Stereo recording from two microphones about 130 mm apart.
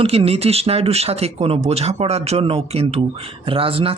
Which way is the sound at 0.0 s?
50° right (ahead or behind).